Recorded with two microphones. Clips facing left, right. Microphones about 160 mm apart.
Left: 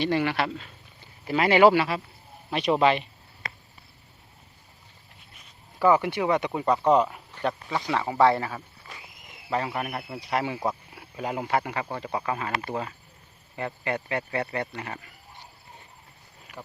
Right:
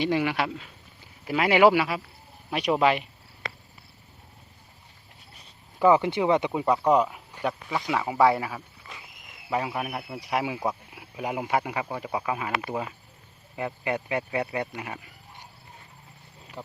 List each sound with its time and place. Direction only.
0.0 s speech: 10° right (ahead or behind)
5.8 s speech: 20° right (ahead or behind)
6.7 s speech: 5° right (ahead or behind)
16.6 s speech: 20° right (ahead or behind)